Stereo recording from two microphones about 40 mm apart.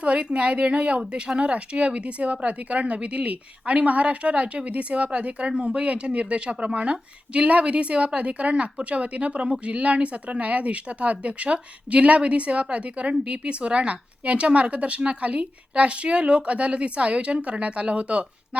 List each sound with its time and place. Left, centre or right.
0.0 s speech: right